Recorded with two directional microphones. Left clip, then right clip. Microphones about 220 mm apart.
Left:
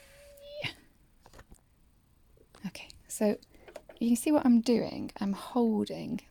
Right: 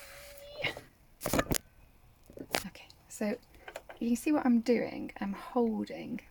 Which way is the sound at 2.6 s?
25° left (ahead or behind).